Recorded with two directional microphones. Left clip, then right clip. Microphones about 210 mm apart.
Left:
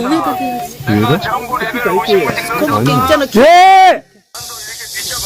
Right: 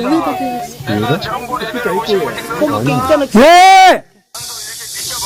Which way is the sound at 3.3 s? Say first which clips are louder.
Right 1 dB; 50° right (ahead or behind).